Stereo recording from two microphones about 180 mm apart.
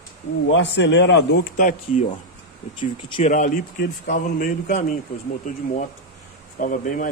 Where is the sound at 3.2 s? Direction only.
45° left (ahead or behind).